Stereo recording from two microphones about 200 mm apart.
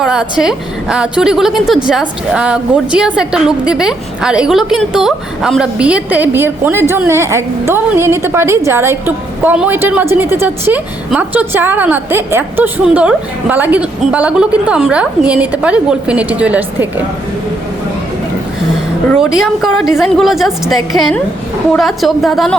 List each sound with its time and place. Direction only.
0.0 s a woman's voice: 5° right (ahead or behind)
19.0 s a woman's voice: 5° right (ahead or behind)